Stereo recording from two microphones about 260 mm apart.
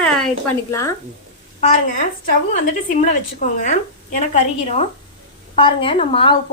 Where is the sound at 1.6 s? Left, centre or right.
Left.